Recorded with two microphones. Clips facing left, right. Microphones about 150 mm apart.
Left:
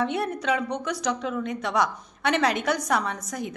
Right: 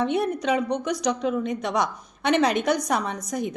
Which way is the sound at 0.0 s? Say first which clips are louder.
Right 3 dB; 20° right (ahead or behind).